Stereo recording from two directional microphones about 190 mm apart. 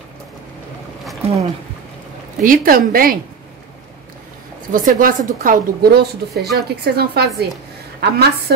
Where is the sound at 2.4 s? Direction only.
45° right (ahead or behind).